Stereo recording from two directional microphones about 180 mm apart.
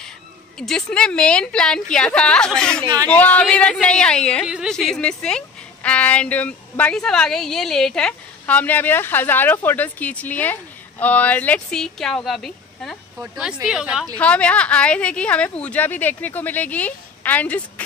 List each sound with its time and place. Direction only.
0.6 s a woman's voice: 5° left (ahead or behind)
2.8 s speech: 20° right (ahead or behind)
3.1 s a woman's voice: 10° left (ahead or behind)
14.1 s a woman's voice: 5° left (ahead or behind)